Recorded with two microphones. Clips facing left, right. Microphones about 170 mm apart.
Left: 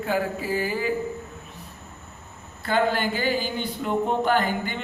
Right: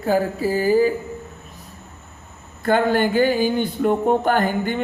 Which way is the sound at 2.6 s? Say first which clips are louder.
Right 5 dB; 50° right (ahead or behind).